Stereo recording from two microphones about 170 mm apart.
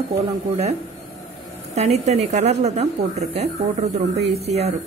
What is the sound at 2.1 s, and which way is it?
Speech, 40° right (ahead or behind).